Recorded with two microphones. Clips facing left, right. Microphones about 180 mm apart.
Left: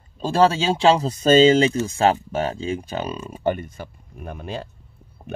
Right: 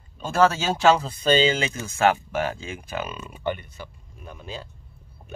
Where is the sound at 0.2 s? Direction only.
30° left (ahead or behind).